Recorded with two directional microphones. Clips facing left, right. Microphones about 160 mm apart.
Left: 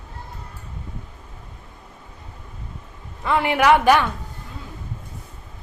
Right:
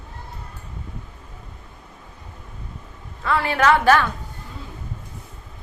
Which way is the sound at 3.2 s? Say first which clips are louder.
Left 2 dB; 20° left (ahead or behind).